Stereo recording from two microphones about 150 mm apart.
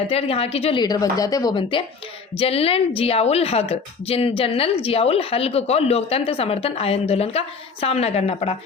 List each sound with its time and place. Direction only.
0.1 s a woman's voice: 40° left (ahead or behind)
0.8 s a woman's voice: 25° left (ahead or behind); by 8.5 s 45° left (ahead or behind)